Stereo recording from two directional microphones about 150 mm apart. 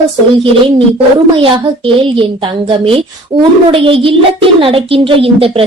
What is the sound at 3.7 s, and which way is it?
Speech, 35° right (ahead or behind).